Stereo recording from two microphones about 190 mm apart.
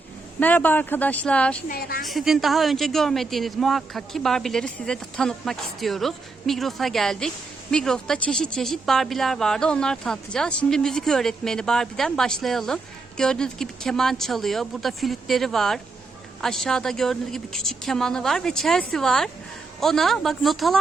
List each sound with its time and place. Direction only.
0.3 s speech: 10° left (ahead or behind)
1.6 s a woman's voice: 50° left (ahead or behind)
2.0 s a woman's voice: centre (ahead or behind)